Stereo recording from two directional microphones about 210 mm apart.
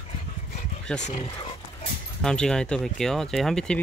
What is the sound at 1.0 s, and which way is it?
Speech, 35° left (ahead or behind).